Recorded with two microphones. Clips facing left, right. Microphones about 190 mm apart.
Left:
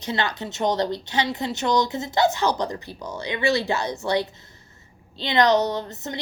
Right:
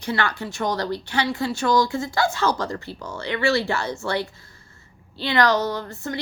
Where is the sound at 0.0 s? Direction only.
20° left (ahead or behind).